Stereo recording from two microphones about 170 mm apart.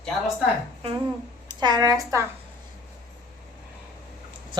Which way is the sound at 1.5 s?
25° right (ahead or behind).